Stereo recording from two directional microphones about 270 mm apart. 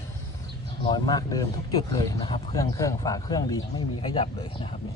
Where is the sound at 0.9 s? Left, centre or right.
Centre.